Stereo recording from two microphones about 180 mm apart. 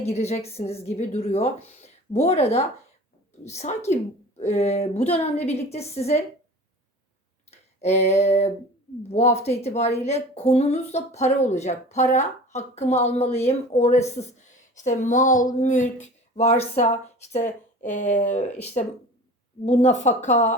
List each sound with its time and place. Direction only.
0.0 s a woman's voice: 35° left (ahead or behind)
7.5 s a sound: 35° left (ahead or behind)
9.0 s a woman's voice: 35° left (ahead or behind)